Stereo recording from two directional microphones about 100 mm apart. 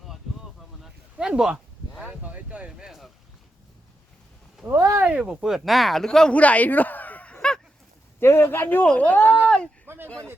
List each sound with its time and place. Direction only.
1.1 s a sound: 10° right (ahead or behind)
2.0 s boat: 10° right (ahead or behind)
4.6 s speech: 25° right (ahead or behind)
5.0 s speech: 10° right (ahead or behind); by 7.6 s 10° left (ahead or behind)
8.2 s speech: 25° left (ahead or behind)
9.8 s a sound: 25° right (ahead or behind)